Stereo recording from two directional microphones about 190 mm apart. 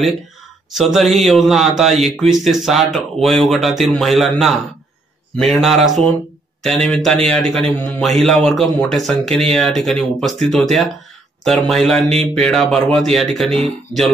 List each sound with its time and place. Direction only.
0.7 s a man's voice: centre (ahead or behind)
12.1 s a sound: 35° right (ahead or behind)
12.4 s a man's voice: centre (ahead or behind)